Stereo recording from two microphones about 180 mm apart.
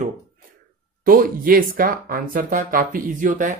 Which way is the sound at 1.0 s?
50° right (ahead or behind).